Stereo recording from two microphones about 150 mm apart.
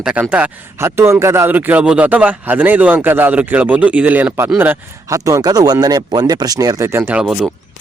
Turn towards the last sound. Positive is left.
turn(degrees=0)  # may be behind; listen again after turning